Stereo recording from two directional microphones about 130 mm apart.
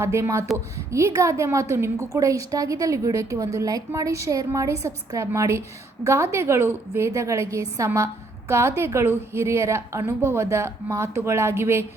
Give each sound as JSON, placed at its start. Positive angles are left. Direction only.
{"t": 0.0, "sound": "a woman's voice", "side_deg": -20}